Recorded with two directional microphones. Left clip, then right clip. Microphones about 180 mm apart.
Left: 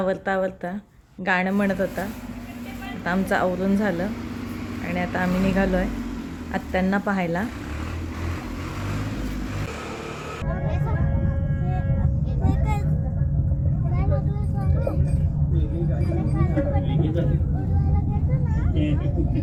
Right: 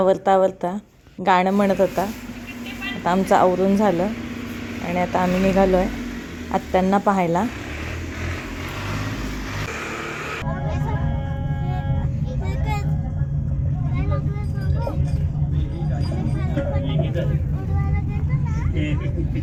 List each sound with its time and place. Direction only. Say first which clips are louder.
0.0 s speech: right 7 dB; 15° right (ahead or behind)
4.9 s speech: right 5 dB; 15° right (ahead or behind)